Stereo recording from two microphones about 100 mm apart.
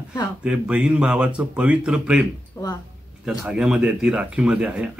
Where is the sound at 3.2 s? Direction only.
10° right (ahead or behind).